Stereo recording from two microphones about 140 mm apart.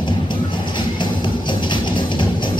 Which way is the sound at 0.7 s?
35° left (ahead or behind).